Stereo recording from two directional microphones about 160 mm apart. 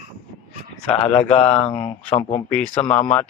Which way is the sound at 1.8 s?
35° left (ahead or behind).